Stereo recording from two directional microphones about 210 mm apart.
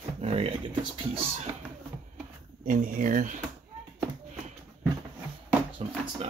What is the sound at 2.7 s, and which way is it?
Speech, 40° right (ahead or behind).